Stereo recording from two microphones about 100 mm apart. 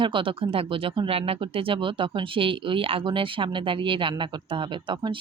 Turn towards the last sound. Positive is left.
turn(degrees=-55)  # may be behind; listen again after turning